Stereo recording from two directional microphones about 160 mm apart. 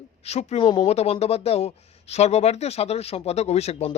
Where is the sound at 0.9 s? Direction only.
40° left (ahead or behind).